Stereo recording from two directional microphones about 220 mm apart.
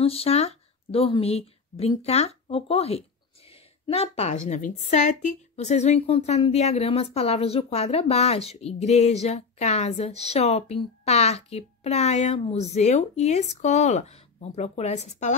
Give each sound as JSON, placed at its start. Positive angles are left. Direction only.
{"t": 0.0, "sound": "a woman's voice", "side_deg": 25}